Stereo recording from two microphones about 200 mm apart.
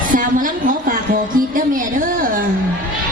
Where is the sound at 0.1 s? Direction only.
40° right (ahead or behind).